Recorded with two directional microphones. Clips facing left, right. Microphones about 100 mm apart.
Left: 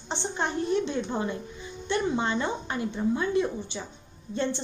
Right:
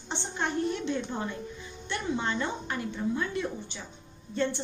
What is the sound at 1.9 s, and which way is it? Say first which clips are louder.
A woman's voice: left 4 dB; 20° left (ahead or behind).